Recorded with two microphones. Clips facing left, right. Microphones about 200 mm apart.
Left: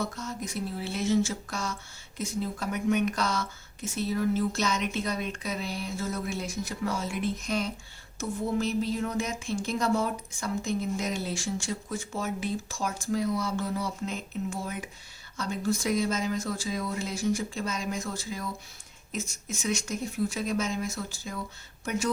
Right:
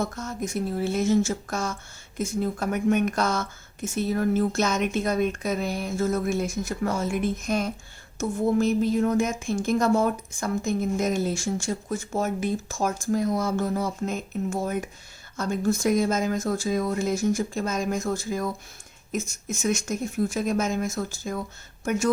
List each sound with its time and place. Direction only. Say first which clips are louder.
0.0 s speech: right 4 dB; 50° right (ahead or behind)